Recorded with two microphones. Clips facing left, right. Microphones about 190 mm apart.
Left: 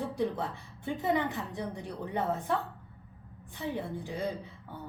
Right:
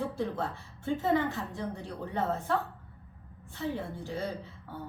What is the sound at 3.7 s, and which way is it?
Speech, 15° left (ahead or behind).